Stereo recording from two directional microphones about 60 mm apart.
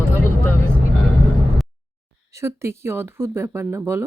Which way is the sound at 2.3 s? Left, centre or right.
Right.